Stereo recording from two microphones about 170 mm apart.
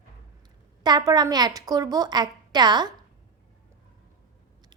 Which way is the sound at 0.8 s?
25° right (ahead or behind).